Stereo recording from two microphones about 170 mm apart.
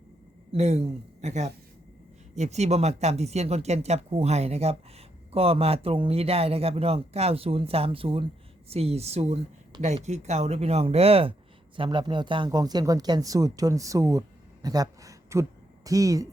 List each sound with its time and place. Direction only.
0.5 s speech: 40° right (ahead or behind); by 16.2 s 20° right (ahead or behind)